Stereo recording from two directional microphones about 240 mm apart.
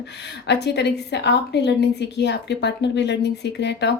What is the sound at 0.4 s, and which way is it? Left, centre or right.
A woman's voice, left.